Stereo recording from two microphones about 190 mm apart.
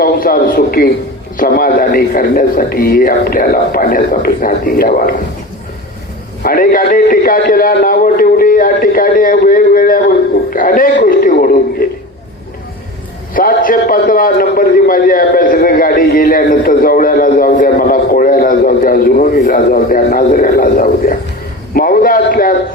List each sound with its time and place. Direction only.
0.0 s a man's voice: 50° left (ahead or behind)
6.4 s a man's voice: 50° left (ahead or behind)
10.9 s radio: 50° left (ahead or behind)
13.3 s a man's voice: 45° left (ahead or behind)